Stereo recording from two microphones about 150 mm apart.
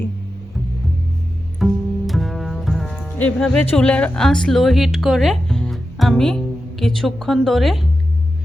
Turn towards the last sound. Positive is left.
turn(degrees=0)  # may be behind; listen again after turning